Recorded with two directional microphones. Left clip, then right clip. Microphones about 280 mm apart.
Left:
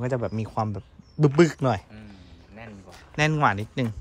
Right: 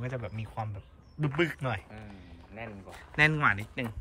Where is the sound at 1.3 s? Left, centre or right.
Centre.